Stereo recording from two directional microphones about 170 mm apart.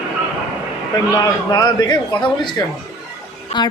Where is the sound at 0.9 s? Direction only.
25° left (ahead or behind).